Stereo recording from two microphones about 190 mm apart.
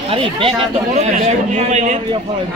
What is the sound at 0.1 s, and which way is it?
Speech, 30° right (ahead or behind).